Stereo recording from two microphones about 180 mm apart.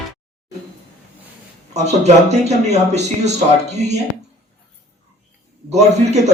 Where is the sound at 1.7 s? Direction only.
40° right (ahead or behind).